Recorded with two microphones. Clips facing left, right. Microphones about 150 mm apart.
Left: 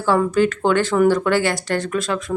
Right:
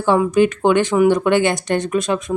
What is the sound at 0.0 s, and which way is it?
A woman's voice, 15° right (ahead or behind).